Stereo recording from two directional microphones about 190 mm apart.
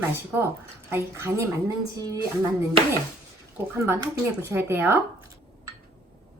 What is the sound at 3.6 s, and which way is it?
Speech, 15° right (ahead or behind).